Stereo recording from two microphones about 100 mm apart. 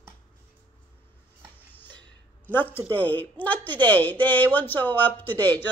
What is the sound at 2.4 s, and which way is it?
A woman's voice, 20° left (ahead or behind).